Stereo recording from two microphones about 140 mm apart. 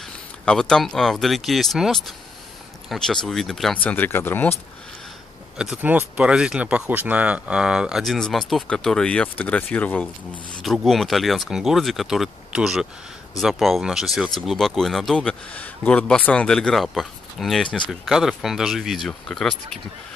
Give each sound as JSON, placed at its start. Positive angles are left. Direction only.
{"t": 0.0, "sound": "speech", "side_deg": 5}
{"t": 5.6, "sound": "speech", "side_deg": -10}